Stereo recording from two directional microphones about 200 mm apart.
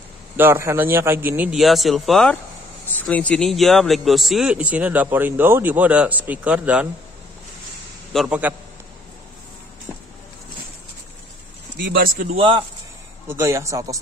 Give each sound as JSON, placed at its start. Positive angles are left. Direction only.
{"t": 0.4, "sound": "speech", "side_deg": -15}
{"t": 8.1, "sound": "speech", "side_deg": -5}
{"t": 12.0, "sound": "a man's voice", "side_deg": -45}
{"t": 13.3, "sound": "speech", "side_deg": -15}